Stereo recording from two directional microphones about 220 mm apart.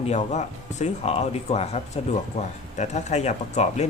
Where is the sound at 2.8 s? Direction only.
30° left (ahead or behind).